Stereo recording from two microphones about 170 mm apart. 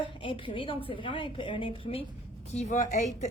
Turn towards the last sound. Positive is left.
turn(degrees=40)  # may be behind; listen again after turning